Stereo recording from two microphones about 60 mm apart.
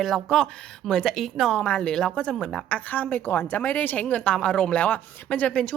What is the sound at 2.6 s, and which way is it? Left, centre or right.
A woman's voice, left.